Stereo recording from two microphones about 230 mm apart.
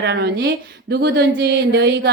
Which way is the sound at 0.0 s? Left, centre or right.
Right.